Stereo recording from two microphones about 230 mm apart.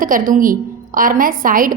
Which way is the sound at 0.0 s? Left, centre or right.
Right.